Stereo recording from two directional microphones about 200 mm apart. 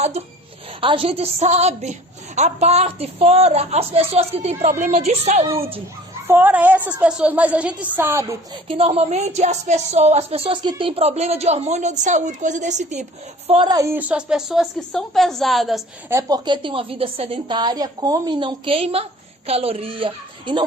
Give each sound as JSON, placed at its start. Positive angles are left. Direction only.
{"t": 0.0, "sound": "a woman's voice", "side_deg": -35}
{"t": 6.2, "sound": "a woman's voice", "side_deg": -10}
{"t": 8.6, "sound": "speech", "side_deg": -25}
{"t": 13.5, "sound": "a woman's voice", "side_deg": -20}
{"t": 16.0, "sound": "a woman's voice", "side_deg": -15}